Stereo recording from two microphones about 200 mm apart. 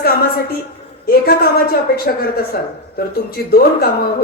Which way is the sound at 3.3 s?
50° left (ahead or behind).